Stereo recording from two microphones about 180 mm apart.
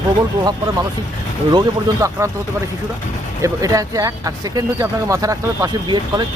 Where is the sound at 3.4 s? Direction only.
15° right (ahead or behind).